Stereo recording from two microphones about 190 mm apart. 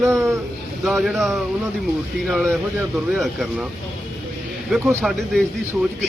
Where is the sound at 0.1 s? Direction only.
15° right (ahead or behind).